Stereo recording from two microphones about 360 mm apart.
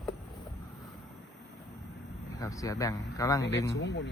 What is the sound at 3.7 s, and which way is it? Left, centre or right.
Speech, left.